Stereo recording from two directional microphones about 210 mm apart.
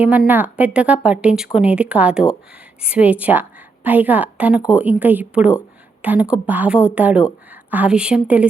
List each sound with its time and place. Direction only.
0.0 s a woman's voice: 5° right (ahead or behind)